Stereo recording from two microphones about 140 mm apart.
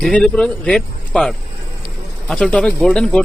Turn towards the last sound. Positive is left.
turn(degrees=5)  # may be behind; listen again after turning